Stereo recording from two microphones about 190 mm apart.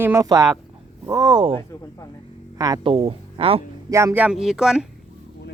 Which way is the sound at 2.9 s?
30° right (ahead or behind).